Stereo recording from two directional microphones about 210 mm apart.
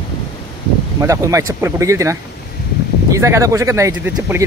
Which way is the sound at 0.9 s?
15° right (ahead or behind).